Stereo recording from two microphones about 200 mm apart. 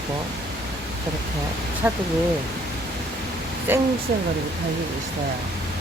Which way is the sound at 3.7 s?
10° right (ahead or behind).